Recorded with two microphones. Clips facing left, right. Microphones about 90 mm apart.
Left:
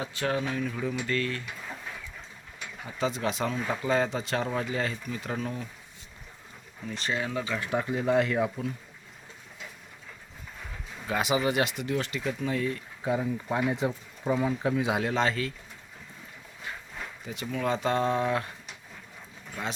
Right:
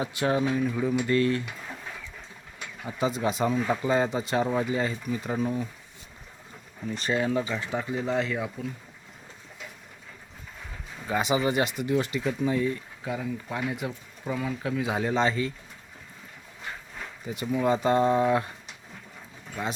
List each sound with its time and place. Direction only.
0.0 s speech: 20° right (ahead or behind)
2.8 s speech: 10° right (ahead or behind)
6.8 s speech: 5° right (ahead or behind)
7.7 s speech: 10° left (ahead or behind)
11.0 s speech: centre (ahead or behind)
13.1 s speech: 20° left (ahead or behind)
15.0 s speech: centre (ahead or behind)
17.4 s speech: 10° right (ahead or behind)